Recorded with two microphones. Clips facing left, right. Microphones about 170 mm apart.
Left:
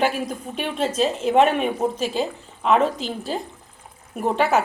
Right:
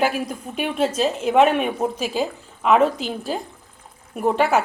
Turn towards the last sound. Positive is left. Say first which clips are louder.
# right 1 dB
turn(degrees=0)  # may be behind; listen again after turning